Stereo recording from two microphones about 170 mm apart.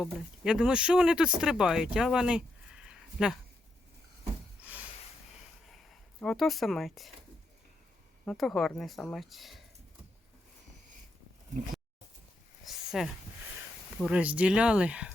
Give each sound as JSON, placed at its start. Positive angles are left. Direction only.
{"t": 0.0, "sound": "speech", "side_deg": -5}
{"t": 4.6, "sound": "a sound", "side_deg": -10}
{"t": 5.6, "sound": "speech", "side_deg": 0}
{"t": 8.2, "sound": "speech", "side_deg": 0}
{"t": 12.6, "sound": "a sound", "side_deg": 0}
{"t": 14.0, "sound": "speech", "side_deg": -5}